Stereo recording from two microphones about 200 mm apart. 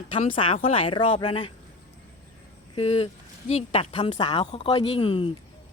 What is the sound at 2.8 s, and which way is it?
A woman's voice, 30° left (ahead or behind).